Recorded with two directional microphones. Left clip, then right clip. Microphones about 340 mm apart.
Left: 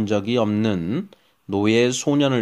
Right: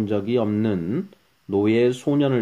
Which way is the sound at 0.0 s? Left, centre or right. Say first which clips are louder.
Left 2 dB; left.